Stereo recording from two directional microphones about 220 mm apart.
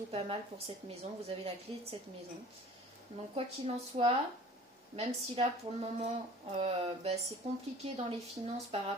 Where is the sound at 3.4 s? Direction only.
30° right (ahead or behind).